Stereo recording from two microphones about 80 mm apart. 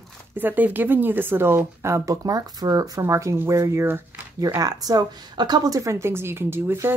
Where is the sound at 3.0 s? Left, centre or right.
Right.